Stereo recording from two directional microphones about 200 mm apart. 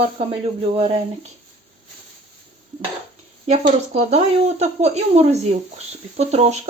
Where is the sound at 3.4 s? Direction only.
35° right (ahead or behind).